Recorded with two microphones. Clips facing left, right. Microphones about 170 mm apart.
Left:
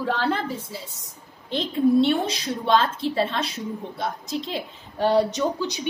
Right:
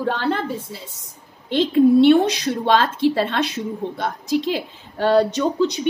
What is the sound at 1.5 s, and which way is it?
A woman's voice, 70° right (ahead or behind).